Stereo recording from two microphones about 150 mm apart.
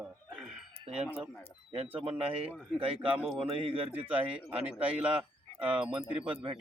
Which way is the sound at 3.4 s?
40° right (ahead or behind).